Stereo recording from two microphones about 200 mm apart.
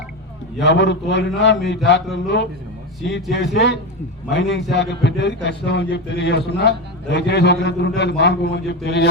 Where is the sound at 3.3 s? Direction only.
60° left (ahead or behind).